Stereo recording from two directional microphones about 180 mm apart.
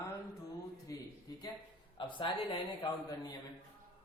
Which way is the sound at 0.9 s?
20° left (ahead or behind).